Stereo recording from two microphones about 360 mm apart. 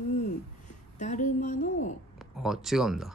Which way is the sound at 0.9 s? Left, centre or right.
Left.